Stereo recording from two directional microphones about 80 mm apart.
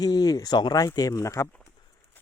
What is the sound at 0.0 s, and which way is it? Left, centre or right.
Speech, left.